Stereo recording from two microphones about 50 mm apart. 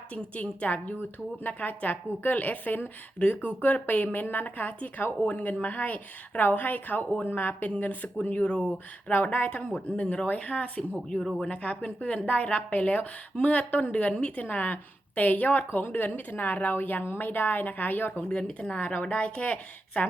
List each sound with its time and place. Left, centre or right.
0.1 s speech: left
8.4 s a woman's voice: centre
9.0 s a woman's voice: left
10.9 s speech: centre
11.3 s a woman's voice: left
18.2 s a woman's voice: left